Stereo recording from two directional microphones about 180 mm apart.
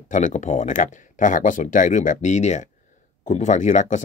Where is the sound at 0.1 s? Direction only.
45° left (ahead or behind).